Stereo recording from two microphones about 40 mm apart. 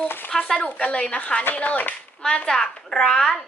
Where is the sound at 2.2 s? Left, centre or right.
Left.